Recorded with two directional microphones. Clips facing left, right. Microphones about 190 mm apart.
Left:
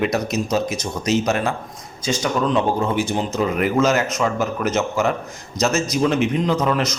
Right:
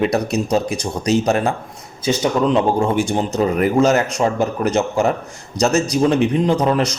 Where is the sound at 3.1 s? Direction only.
40° right (ahead or behind).